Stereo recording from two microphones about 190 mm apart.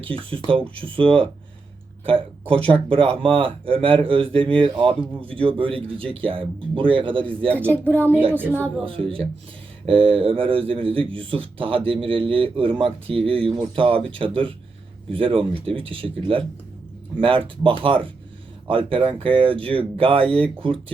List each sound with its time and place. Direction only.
0.0 s a man's voice: 30° right (ahead or behind)
2.5 s a man's voice: 30° right (ahead or behind)
7.5 s speech: 10° right (ahead or behind)
7.9 s speech: 10° left (ahead or behind)
8.3 s speech: 10° right (ahead or behind)
8.5 s speech: 5° left (ahead or behind)
8.8 s a man's voice: 30° right (ahead or behind)